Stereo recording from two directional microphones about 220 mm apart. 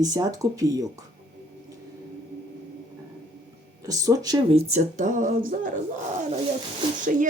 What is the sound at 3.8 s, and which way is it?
Speech, 15° right (ahead or behind).